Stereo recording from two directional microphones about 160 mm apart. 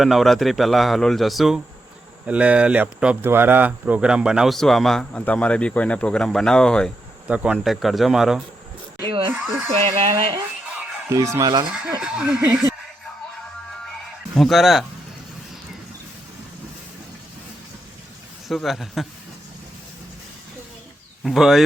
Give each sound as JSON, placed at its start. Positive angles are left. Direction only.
{"t": 0.0, "sound": "speech", "side_deg": 0}
{"t": 7.3, "sound": "speech", "side_deg": -5}
{"t": 9.0, "sound": "a sound", "side_deg": -30}
{"t": 9.3, "sound": "speech", "side_deg": -10}
{"t": 10.1, "sound": "speech", "side_deg": -25}
{"t": 12.0, "sound": "speech", "side_deg": -5}
{"t": 14.3, "sound": "speech", "side_deg": 0}
{"t": 18.4, "sound": "speech", "side_deg": 0}
{"t": 21.2, "sound": "speech", "side_deg": 0}